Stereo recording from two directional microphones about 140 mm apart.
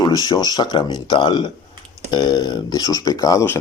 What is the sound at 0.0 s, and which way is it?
Speech, 30° left (ahead or behind).